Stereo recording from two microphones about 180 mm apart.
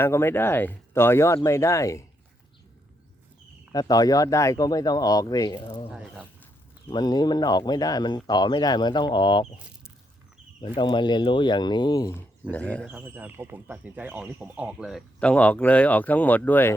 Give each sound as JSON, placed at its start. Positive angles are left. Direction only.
{"t": 0.0, "sound": "speech", "side_deg": 15}
{"t": 3.7, "sound": "speech", "side_deg": 20}
{"t": 5.9, "sound": "speech", "side_deg": -5}
{"t": 6.9, "sound": "speech", "side_deg": 20}
{"t": 10.8, "sound": "speech", "side_deg": 25}
{"t": 12.5, "sound": "speech", "side_deg": 10}
{"t": 12.9, "sound": "speech", "side_deg": -10}